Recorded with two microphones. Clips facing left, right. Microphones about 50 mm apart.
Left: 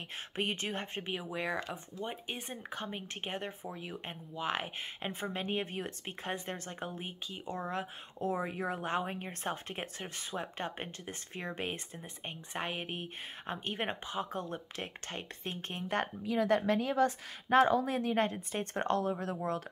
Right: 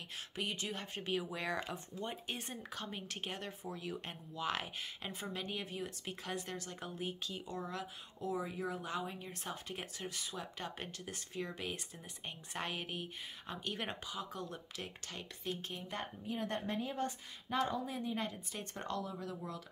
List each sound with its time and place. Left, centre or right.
0.4 s speech: left
1.1 s speech: centre; by 15.5 s left
15.7 s a woman's voice: left